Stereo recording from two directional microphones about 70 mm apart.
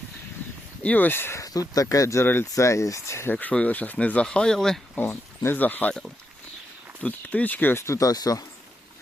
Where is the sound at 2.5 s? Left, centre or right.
Left.